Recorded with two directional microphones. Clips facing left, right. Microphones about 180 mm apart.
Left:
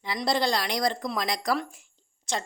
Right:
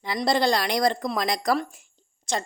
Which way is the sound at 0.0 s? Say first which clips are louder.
Right 4 dB; 45° right (ahead or behind).